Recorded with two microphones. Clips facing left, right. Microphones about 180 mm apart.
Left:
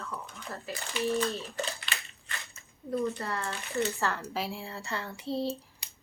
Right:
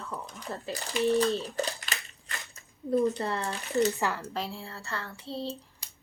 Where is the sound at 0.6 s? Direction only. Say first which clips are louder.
Right 4 dB; 40° right (ahead or behind).